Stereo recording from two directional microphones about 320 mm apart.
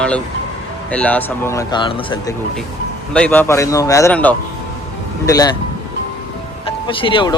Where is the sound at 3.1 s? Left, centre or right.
Centre.